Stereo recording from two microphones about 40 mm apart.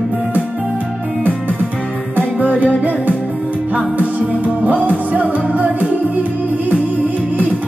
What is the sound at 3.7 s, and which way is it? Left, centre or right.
Music, right.